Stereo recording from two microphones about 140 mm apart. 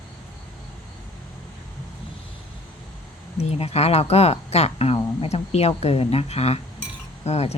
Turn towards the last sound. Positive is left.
turn(degrees=50)  # may be behind; listen again after turning